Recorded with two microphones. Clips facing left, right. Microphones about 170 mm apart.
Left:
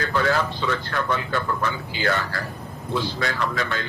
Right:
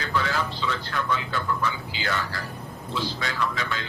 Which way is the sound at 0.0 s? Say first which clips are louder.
Left 5 dB; 55° left (ahead or behind).